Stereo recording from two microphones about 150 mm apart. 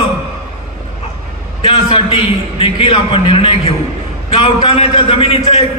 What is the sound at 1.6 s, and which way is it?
A man's voice, 35° left (ahead or behind).